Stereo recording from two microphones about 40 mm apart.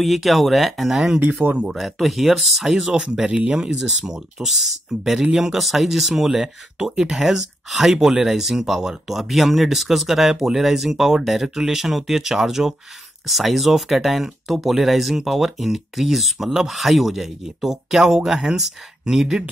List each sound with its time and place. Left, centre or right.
0.0 s speech: centre
0.9 s speech: centre
1.7 s speech: centre
3.3 s speech: right